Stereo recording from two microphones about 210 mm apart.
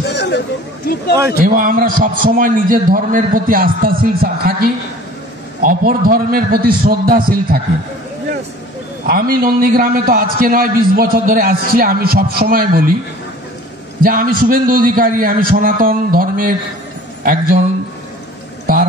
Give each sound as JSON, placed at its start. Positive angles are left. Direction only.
{"t": 0.0, "sound": "a sound", "side_deg": 55}
{"t": 1.4, "sound": "a man's voice", "side_deg": -40}
{"t": 9.0, "sound": "a man's voice", "side_deg": -45}
{"t": 14.0, "sound": "a man's voice", "side_deg": -45}